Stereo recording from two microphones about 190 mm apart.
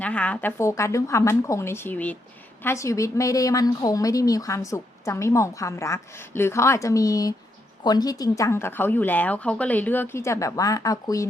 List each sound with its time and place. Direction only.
0.0 s a woman's voice: 5° left (ahead or behind)